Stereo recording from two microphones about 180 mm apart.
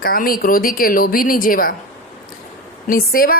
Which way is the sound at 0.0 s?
55° left (ahead or behind).